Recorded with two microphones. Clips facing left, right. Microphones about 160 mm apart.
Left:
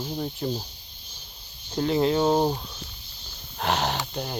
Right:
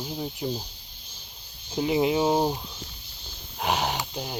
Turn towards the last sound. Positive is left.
turn(degrees=-5)  # may be behind; listen again after turning